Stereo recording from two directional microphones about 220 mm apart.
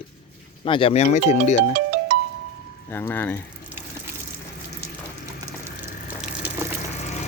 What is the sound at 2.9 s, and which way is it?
Speech, 10° left (ahead or behind).